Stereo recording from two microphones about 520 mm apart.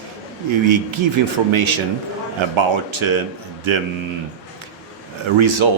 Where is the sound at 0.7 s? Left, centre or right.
Right.